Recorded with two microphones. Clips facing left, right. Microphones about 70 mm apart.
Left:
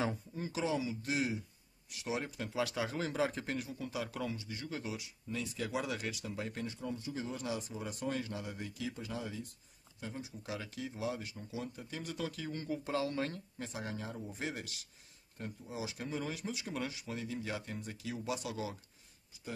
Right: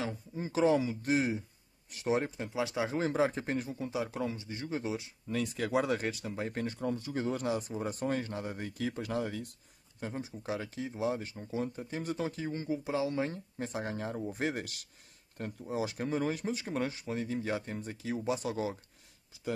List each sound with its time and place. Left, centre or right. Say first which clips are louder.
0.4 s speech: right 9 dB; right
2.4 s speech: right 3 dB; right
5.3 s speech: right 7 dB; right
6.6 s speech: right 6 dB; right
9.9 s speech: right 5 dB; right
12.6 s speech: right 3 dB; centre
13.6 s speech: right 6 dB; right